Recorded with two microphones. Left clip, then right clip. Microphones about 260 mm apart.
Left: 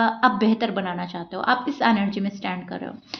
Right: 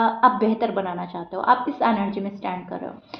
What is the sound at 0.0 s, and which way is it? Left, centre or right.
A woman's voice, left.